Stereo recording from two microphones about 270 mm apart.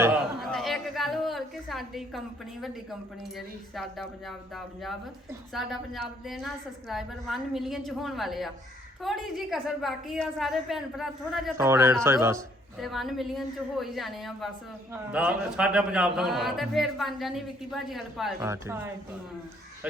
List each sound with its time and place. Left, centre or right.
0.0 s a woman's voice: centre